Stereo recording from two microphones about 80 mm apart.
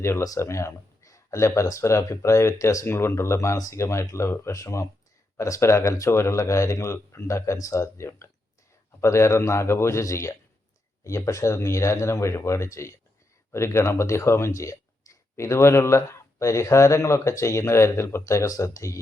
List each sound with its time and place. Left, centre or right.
0.0 s speech: left